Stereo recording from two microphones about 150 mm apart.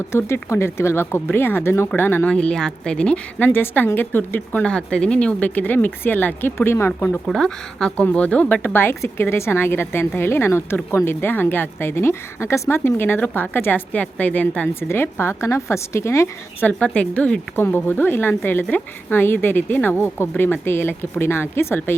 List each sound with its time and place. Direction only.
0.1 s a woman's voice: 15° left (ahead or behind)
7.3 s a woman's voice: 5° left (ahead or behind)